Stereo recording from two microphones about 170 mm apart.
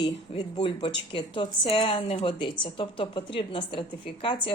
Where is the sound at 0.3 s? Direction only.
35° left (ahead or behind).